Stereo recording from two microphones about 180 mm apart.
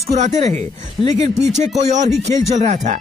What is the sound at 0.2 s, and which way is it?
Speech, 40° right (ahead or behind).